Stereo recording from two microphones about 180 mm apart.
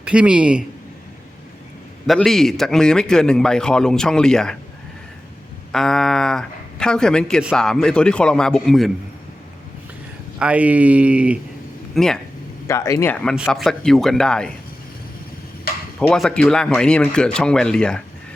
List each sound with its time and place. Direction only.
0.0 s a man's voice: 5° right (ahead or behind)
2.0 s a man's voice: centre (ahead or behind)
5.7 s a man's voice: centre (ahead or behind)
10.3 s a man's voice: 5° right (ahead or behind)
12.6 s speech: 15° left (ahead or behind)
13.3 s a man's voice: 5° right (ahead or behind)
16.0 s a man's voice: 5° left (ahead or behind)